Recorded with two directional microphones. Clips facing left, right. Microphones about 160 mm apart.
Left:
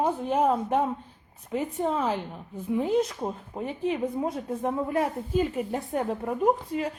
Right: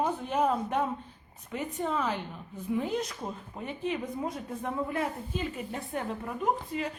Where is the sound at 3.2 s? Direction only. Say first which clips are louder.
Left 6 dB; 35° left (ahead or behind).